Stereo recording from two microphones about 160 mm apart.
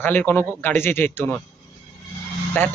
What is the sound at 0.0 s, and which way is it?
Speech, 10° left (ahead or behind).